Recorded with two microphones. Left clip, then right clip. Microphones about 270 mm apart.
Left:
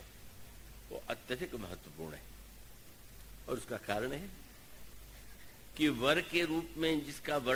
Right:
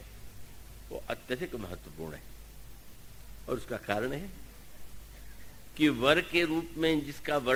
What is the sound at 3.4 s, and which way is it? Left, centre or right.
Speech, left.